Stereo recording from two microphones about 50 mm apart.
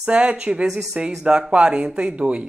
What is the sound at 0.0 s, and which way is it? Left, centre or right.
Speech, right.